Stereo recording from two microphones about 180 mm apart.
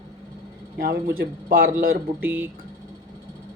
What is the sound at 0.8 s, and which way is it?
Speech, 55° right (ahead or behind).